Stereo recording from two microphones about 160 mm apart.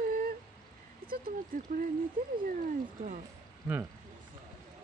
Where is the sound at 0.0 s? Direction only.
60° right (ahead or behind).